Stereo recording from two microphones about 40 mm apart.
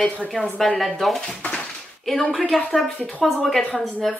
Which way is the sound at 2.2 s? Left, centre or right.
Left.